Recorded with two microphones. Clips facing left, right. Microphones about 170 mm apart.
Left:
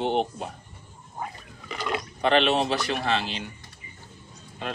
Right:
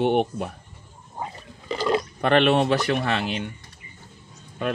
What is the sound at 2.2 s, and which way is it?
Speech, 55° right (ahead or behind).